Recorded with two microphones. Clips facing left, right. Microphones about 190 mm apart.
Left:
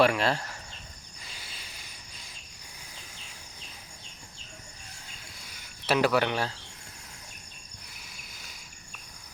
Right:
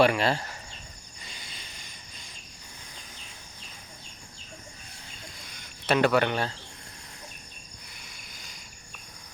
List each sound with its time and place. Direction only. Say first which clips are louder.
0.0 s speech: right 1 dB; centre (ahead or behind)
1.2 s a sound: right 1 dB; 5° left (ahead or behind)
5.5 s speech: right 2 dB; 5° left (ahead or behind)